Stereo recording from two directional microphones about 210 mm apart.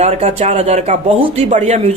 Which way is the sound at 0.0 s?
30° right (ahead or behind).